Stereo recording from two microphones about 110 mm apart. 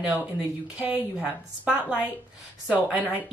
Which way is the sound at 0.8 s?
10° right (ahead or behind).